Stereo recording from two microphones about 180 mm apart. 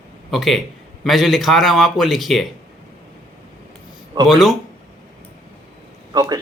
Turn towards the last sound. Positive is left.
turn(degrees=-20)  # may be behind; listen again after turning